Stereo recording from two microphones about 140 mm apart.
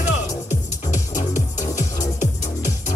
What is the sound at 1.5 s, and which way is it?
Music, 60° left (ahead or behind).